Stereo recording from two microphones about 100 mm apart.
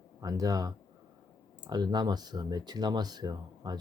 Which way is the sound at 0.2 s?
35° right (ahead or behind).